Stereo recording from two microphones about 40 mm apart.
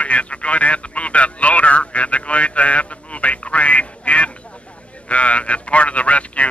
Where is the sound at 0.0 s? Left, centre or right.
Left.